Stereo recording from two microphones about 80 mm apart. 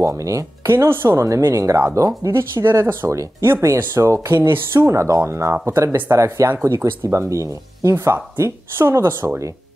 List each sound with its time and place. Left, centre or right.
0.0 s speech: right
4.4 s speech: right
4.8 s speech: right